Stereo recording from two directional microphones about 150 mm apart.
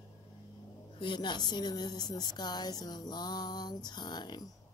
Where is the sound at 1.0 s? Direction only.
30° left (ahead or behind).